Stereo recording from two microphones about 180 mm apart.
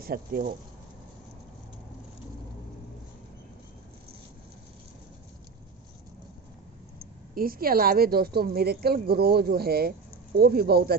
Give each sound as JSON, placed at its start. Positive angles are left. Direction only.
{"t": 0.0, "sound": "speech", "side_deg": -55}
{"t": 7.3, "sound": "speech", "side_deg": -55}